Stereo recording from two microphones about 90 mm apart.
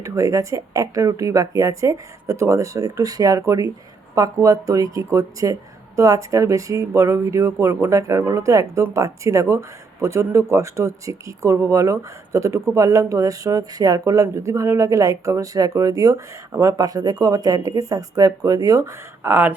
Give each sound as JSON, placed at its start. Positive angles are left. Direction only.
{"t": 0.0, "sound": "speech", "side_deg": -35}